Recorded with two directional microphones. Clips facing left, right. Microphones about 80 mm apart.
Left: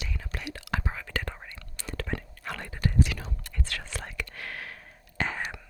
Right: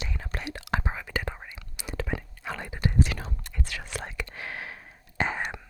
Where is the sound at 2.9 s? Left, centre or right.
Right.